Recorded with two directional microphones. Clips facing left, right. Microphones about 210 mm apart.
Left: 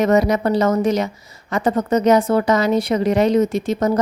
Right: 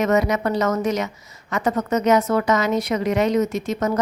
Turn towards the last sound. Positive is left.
turn(degrees=30)  # may be behind; listen again after turning